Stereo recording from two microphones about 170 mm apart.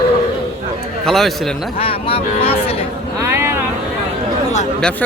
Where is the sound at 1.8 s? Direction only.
35° left (ahead or behind).